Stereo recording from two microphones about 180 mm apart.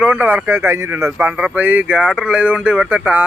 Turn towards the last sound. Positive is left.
turn(degrees=-5)  # may be behind; listen again after turning